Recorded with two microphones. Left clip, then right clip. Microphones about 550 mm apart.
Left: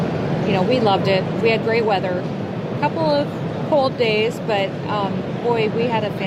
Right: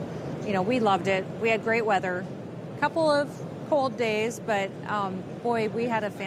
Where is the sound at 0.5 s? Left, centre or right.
Right.